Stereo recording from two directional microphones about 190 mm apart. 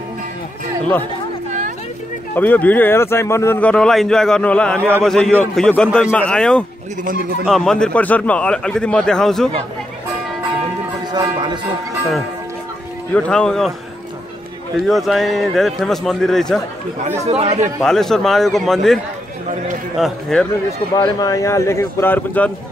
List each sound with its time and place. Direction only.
2.3 s a man's voice: 10° left (ahead or behind)
7.1 s speech: 50° right (ahead or behind)
7.4 s a man's voice: centre (ahead or behind)
11.1 s speech: 20° right (ahead or behind)
13.1 s a man's voice: 5° left (ahead or behind)
14.8 s a man's voice: centre (ahead or behind)
17.3 s speech: 35° right (ahead or behind)
17.8 s a man's voice: centre (ahead or behind)
20.0 s a man's voice: 5° left (ahead or behind)
20.9 s speech: 20° left (ahead or behind)